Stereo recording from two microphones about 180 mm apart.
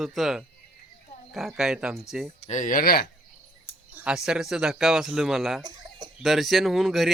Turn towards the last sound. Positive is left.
turn(degrees=0)  # may be behind; listen again after turning